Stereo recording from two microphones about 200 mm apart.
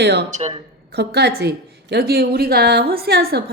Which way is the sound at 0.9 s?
55° right (ahead or behind).